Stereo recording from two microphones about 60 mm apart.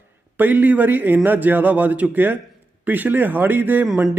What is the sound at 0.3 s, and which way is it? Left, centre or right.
A man's voice, right.